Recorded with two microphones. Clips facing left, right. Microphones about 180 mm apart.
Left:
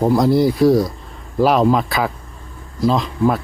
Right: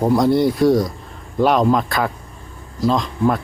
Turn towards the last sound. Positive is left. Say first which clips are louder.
# left 1 dB
turn(degrees=5)  # may be behind; listen again after turning